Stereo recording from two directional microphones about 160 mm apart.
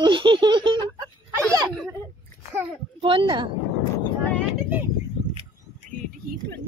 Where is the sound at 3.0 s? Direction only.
30° right (ahead or behind).